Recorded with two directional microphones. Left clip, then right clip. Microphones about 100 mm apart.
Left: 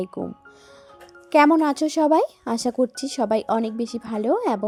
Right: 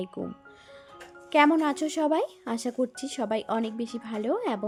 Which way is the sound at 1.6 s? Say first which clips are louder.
Left 6 dB; 45° left (ahead or behind).